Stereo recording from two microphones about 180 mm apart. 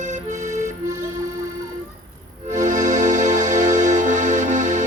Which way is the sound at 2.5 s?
45° right (ahead or behind).